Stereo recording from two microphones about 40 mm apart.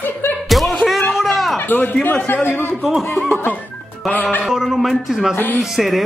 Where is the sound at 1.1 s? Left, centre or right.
Centre.